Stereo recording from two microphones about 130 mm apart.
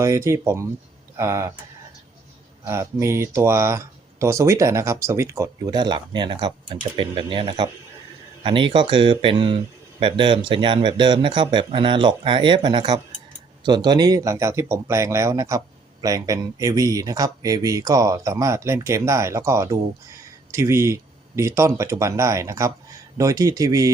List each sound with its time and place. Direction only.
0.0 s speech: 25° right (ahead or behind)
2.6 s speech: 20° right (ahead or behind)
5.7 s speech: 35° right (ahead or behind)